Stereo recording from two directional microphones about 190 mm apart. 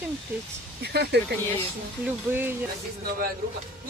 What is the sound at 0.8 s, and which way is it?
Speech, 60° right (ahead or behind).